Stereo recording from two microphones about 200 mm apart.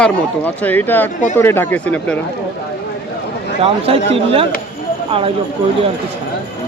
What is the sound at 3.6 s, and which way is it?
Speech, 30° right (ahead or behind).